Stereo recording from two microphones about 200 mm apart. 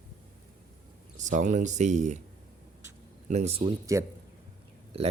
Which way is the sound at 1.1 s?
40° right (ahead or behind).